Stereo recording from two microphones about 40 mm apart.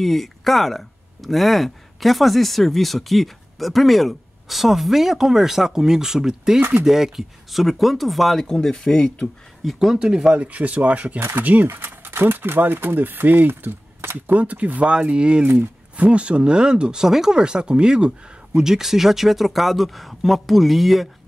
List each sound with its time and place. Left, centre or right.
0.0 s speech: centre
8.5 s speech: centre
9.7 s speech: centre
9.9 s speech: centre
10.3 s speech: right
11.1 s speech: right
11.6 s speech: right
12.4 s speech: right
14.3 s speech: right
15.4 s speech: right
18.7 s speech: centre